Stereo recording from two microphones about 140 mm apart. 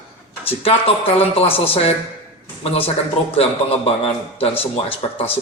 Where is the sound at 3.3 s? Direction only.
45° left (ahead or behind).